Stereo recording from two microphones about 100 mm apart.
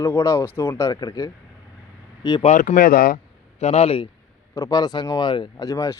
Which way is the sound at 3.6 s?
90° left.